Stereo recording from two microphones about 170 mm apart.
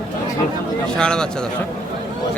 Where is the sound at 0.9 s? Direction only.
5° left (ahead or behind).